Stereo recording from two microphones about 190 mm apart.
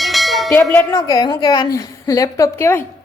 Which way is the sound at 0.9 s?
20° left (ahead or behind).